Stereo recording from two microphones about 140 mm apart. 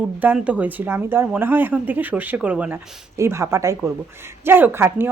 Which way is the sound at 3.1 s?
20° right (ahead or behind).